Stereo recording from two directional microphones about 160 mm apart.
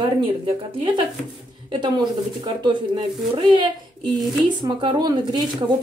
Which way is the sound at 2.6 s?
30° right (ahead or behind).